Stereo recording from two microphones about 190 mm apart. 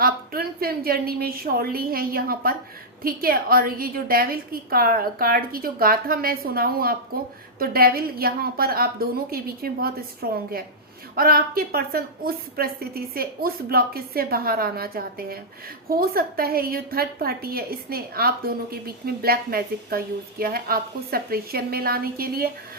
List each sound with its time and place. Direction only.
0.0 s a woman's voice: 55° right (ahead or behind)